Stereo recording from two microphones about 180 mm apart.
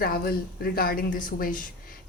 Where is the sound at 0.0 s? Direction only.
55° left (ahead or behind).